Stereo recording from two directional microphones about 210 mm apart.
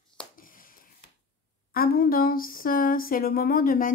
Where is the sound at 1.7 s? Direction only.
45° left (ahead or behind).